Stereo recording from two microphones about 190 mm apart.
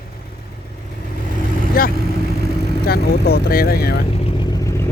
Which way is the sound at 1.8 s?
50° left (ahead or behind).